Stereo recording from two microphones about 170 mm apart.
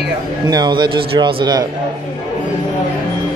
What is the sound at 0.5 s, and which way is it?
Speech, 25° right (ahead or behind).